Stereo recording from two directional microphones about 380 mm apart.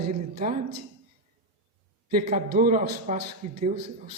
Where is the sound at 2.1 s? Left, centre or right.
Right.